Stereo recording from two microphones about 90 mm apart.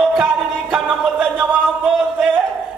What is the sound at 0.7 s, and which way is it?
Music, 10° right (ahead or behind).